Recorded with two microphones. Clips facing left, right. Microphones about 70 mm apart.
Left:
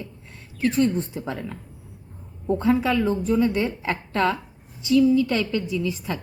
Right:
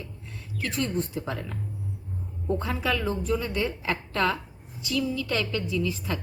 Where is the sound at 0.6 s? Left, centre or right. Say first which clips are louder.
Left 8 dB; left.